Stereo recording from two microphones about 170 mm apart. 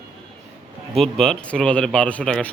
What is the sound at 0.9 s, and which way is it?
A man's voice, centre (ahead or behind).